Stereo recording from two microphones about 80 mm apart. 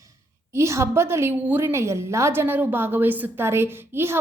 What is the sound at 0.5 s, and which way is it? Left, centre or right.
A woman's voice, right.